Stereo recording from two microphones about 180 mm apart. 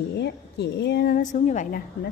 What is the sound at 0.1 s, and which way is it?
A woman's voice, 70° left (ahead or behind).